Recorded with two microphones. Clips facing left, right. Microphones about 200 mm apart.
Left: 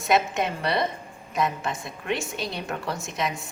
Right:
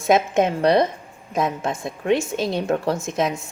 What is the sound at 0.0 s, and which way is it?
A woman's voice, 50° right (ahead or behind).